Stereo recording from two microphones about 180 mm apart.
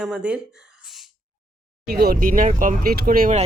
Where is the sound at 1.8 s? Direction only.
60° right (ahead or behind).